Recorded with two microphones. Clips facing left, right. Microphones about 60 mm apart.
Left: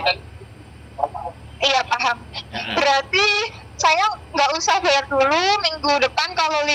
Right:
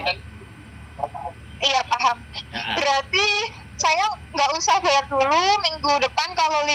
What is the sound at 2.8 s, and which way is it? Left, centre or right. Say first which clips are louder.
A woman's voice: left 4 dB; left.